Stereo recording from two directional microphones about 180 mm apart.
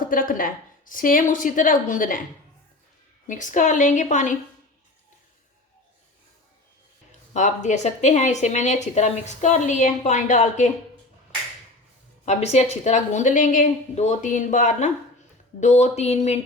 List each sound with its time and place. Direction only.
0.0 s a woman's voice: 50° left (ahead or behind)
3.2 s a woman's voice: 45° left (ahead or behind)
7.3 s a woman's voice: 40° left (ahead or behind)
12.2 s a woman's voice: 40° left (ahead or behind)